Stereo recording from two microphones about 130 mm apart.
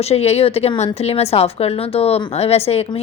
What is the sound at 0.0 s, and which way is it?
A woman's voice, 55° left (ahead or behind).